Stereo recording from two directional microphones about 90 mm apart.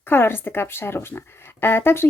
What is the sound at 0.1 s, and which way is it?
Speech, 25° left (ahead or behind).